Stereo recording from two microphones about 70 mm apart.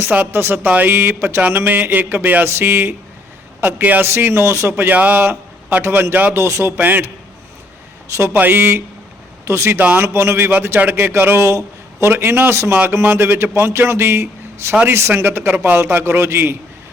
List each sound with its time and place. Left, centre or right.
0.0 s a man's voice: right
4.9 s speech: right
5.2 s a man's voice: right
6.3 s speech: right
6.7 s a man's voice: right
8.1 s speech: right
8.4 s a man's voice: right